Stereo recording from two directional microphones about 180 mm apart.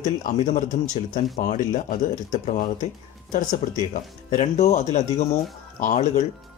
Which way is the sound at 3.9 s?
40° left (ahead or behind).